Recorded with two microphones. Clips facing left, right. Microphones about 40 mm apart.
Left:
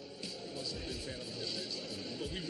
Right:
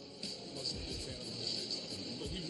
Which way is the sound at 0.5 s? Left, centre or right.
Centre.